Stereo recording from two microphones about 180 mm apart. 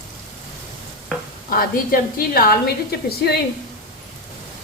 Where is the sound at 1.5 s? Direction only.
55° left (ahead or behind).